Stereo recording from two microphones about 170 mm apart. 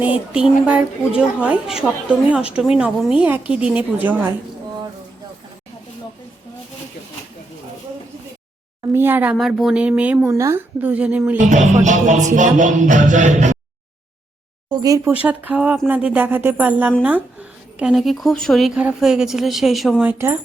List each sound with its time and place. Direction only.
0.0 s a woman's voice: 5° right (ahead or behind)
8.9 s a woman's voice: 10° right (ahead or behind)
11.3 s music: 45° right (ahead or behind)
14.7 s speech: 20° right (ahead or behind)
15.1 s a woman's voice: 10° right (ahead or behind)